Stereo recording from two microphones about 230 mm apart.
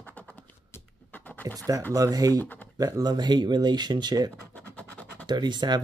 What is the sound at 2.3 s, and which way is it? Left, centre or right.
Speech, centre.